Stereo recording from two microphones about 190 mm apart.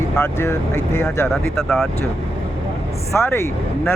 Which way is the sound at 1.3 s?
Centre (ahead or behind).